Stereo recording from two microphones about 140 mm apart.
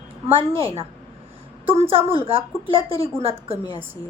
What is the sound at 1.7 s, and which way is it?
Speech, 45° right (ahead or behind).